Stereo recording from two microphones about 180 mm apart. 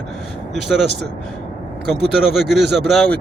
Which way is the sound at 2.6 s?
65° right (ahead or behind).